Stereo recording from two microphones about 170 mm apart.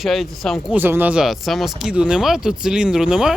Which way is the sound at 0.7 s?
10° right (ahead or behind).